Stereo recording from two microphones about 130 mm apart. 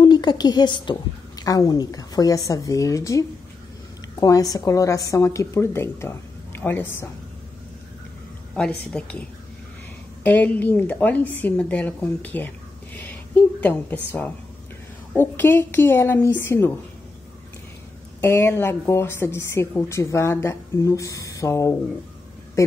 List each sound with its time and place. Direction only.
0.0 s a woman's voice: 35° left (ahead or behind); by 7.1 s 15° left (ahead or behind)
8.5 s a woman's voice: 10° left (ahead or behind)
18.2 s a woman's voice: 20° left (ahead or behind)